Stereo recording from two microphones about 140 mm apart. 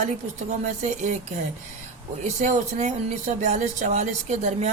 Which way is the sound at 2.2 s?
60° right (ahead or behind).